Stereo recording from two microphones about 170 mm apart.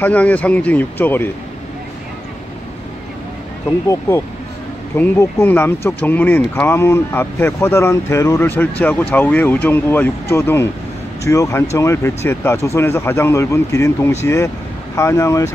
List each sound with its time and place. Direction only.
0.0 s speech: 10° left (ahead or behind)
4.9 s speech: 10° left (ahead or behind)